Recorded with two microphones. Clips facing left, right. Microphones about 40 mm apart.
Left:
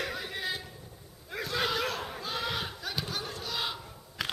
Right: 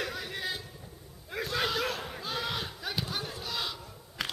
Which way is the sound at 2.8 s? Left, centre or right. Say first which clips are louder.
Right 1 dB; centre.